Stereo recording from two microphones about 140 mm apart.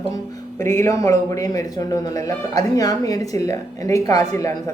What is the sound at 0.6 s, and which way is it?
Speech, 20° left (ahead or behind).